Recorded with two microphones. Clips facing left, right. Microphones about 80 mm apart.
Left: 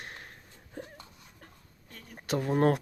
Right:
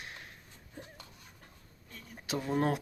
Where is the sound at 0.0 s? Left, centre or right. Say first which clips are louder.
Left 2 dB; left.